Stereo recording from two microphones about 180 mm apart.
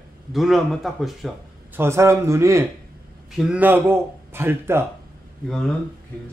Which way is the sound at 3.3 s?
5° right (ahead or behind).